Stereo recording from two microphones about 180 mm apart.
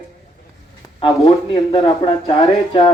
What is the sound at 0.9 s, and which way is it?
Speech, 30° left (ahead or behind).